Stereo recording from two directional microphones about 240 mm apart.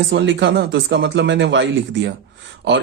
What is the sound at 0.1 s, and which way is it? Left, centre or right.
Speech, right.